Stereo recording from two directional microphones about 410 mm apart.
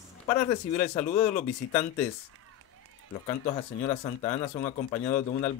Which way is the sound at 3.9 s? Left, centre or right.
Centre.